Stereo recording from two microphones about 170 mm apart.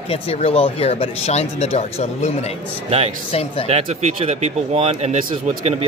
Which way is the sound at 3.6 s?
40° right (ahead or behind).